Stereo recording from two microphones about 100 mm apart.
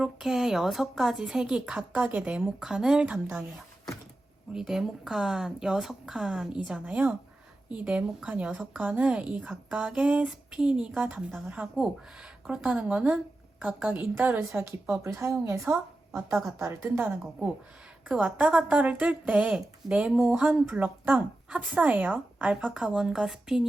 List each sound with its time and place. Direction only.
0.0 s a woman's voice: 5° right (ahead or behind)
4.5 s a woman's voice: 5° right (ahead or behind); by 17.2 s 25° right (ahead or behind)
18.1 s a woman's voice: 10° right (ahead or behind)